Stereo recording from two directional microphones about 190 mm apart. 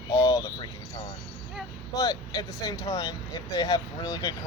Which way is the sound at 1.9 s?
20° left (ahead or behind).